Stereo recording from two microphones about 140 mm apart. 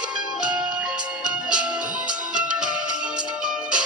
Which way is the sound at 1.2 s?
5° right (ahead or behind).